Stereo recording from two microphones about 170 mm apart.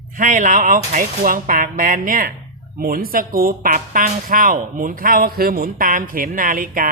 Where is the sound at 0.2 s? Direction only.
50° right (ahead or behind).